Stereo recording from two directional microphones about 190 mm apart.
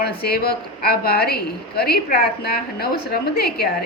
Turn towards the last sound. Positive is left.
turn(degrees=55)  # may be behind; listen again after turning